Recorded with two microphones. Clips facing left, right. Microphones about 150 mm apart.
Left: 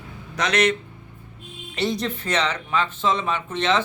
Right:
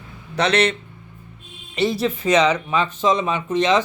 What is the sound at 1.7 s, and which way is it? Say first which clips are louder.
Speech: right 4 dB; 5° right (ahead or behind).